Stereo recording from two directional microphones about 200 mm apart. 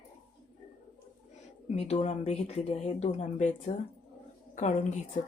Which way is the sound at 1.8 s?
30° left (ahead or behind).